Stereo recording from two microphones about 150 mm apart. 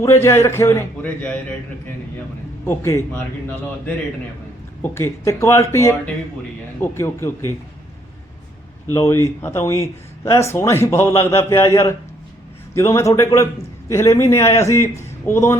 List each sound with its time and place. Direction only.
0.2 s a man's voice: 15° left (ahead or behind)
2.6 s a man's voice: 15° left (ahead or behind)
4.8 s a man's voice: 15° left (ahead or behind)
8.9 s a man's voice: 20° left (ahead or behind)